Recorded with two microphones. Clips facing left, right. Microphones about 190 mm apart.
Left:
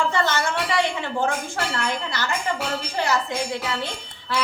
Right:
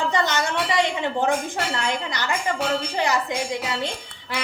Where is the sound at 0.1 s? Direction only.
15° right (ahead or behind).